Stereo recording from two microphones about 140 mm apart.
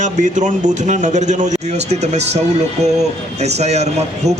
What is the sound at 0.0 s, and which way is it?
A man's voice, 60° right (ahead or behind).